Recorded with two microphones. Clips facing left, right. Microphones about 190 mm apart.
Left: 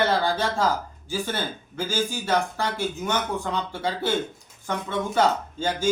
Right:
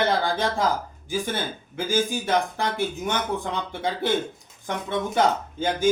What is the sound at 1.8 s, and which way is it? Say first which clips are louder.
Speech: right 3 dB; 20° right (ahead or behind).